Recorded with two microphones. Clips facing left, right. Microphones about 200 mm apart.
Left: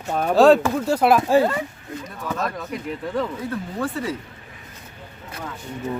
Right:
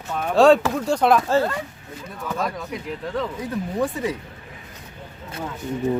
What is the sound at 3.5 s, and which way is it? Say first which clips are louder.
Speech: right 2 dB; 15° right (ahead or behind).